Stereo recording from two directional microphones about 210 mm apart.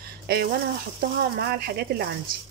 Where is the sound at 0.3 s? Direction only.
50° right (ahead or behind).